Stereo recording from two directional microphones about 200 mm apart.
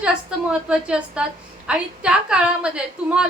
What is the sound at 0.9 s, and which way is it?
A woman's voice, 5° right (ahead or behind).